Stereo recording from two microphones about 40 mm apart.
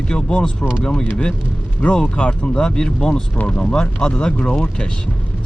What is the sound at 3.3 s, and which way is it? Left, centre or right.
Speech, left.